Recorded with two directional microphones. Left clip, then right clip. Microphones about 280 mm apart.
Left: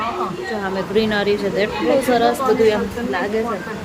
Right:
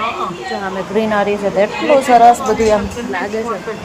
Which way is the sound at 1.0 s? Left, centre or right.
Centre.